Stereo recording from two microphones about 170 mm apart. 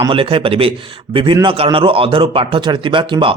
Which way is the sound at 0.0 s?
30° right (ahead or behind).